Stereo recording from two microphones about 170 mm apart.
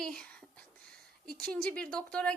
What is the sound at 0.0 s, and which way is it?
Whispering, 5° left (ahead or behind).